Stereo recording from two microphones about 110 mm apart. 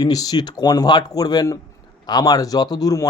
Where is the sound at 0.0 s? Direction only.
35° left (ahead or behind).